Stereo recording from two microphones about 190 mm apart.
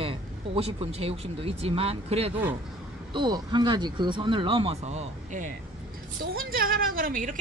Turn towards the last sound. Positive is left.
turn(degrees=-45)  # may be behind; listen again after turning